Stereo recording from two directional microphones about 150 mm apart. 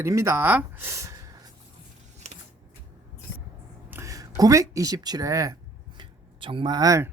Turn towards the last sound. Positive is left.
turn(degrees=-20)  # may be behind; listen again after turning